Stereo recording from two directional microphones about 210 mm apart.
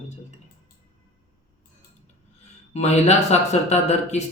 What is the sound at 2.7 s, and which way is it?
Mantra, 30° left (ahead or behind).